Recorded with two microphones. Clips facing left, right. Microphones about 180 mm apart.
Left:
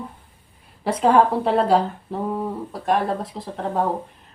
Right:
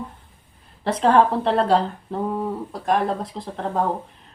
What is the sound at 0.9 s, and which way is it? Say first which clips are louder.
Speech: even; 10° left (ahead or behind).